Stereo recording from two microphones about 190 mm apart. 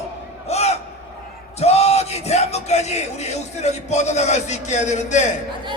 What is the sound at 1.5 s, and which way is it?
Speech, 35° left (ahead or behind).